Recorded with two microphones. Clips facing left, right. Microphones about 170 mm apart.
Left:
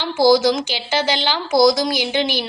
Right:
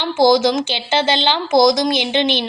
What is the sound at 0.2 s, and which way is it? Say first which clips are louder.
Speech: right 1 dB; 20° right (ahead or behind).